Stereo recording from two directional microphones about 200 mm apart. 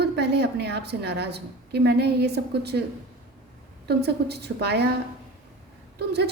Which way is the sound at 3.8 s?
55° right (ahead or behind).